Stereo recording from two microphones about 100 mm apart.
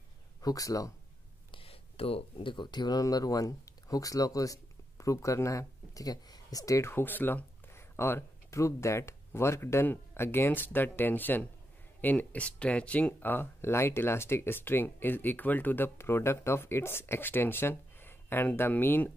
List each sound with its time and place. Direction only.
0.4 s speech: 35° left (ahead or behind)
1.5 s a sound: 70° left (ahead or behind)
2.5 s speech: 50° left (ahead or behind); by 19.1 s 20° left (ahead or behind)